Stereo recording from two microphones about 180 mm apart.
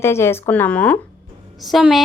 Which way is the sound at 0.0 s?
15° left (ahead or behind).